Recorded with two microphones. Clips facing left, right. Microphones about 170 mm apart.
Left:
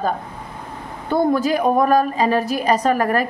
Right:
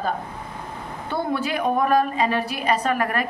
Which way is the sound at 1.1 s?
40° left (ahead or behind).